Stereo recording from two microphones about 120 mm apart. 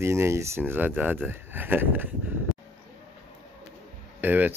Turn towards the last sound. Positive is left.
turn(degrees=-15)  # may be behind; listen again after turning